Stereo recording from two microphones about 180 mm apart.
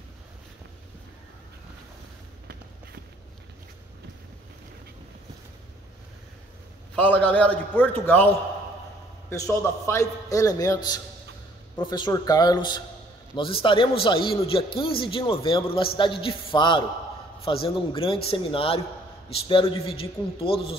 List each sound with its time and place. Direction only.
7.0 s a man's voice: 10° left (ahead or behind); by 20.7 s 30° left (ahead or behind)